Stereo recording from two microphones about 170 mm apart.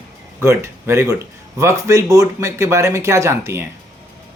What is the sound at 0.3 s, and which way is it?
A woman's voice, 15° right (ahead or behind).